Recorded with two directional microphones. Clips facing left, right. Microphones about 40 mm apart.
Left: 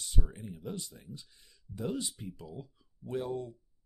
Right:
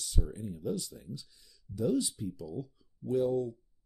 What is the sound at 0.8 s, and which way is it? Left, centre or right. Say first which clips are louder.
Speech: right 4 dB; centre.